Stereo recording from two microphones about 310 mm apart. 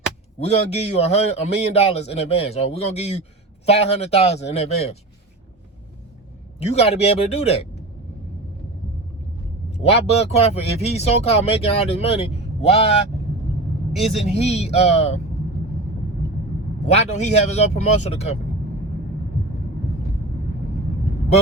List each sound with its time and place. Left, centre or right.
0.3 s speech: centre
6.6 s speech: centre
9.7 s speech: centre
14.0 s speech: left
16.8 s speech: left